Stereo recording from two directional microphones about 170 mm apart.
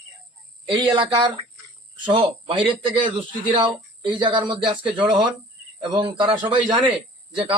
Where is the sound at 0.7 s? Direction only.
30° right (ahead or behind).